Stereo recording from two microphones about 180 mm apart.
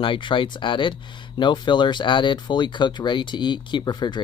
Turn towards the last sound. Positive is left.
turn(degrees=25)  # may be behind; listen again after turning